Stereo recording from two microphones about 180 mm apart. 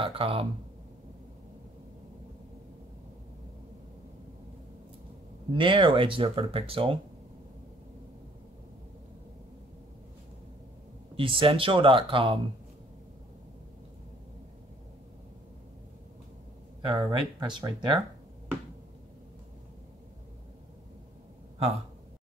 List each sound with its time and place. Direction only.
0.0 s speech: 30° right (ahead or behind)
5.5 s speech: 30° right (ahead or behind)
11.1 s speech: 30° right (ahead or behind)
16.8 s speech: 25° right (ahead or behind)